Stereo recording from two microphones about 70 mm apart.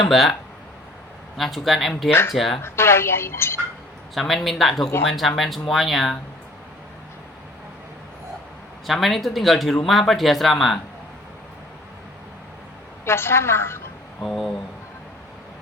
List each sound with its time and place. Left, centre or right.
0.1 s speech: centre
1.4 s speech: centre
2.6 s a woman's voice: left
4.1 s speech: centre
8.9 s speech: centre
13.1 s a woman's voice: left
14.2 s speech: centre